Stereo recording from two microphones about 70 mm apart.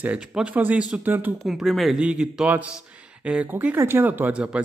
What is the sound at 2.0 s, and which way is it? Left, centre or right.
A man's voice, centre.